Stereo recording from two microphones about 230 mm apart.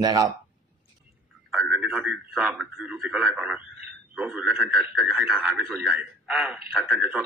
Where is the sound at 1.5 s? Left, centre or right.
Centre.